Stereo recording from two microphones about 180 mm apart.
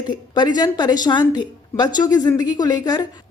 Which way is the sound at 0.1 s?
25° left (ahead or behind).